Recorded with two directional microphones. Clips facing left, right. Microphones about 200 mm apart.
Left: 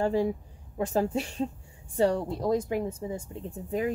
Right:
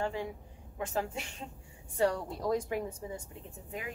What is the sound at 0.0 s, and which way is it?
Speech, 35° left (ahead or behind).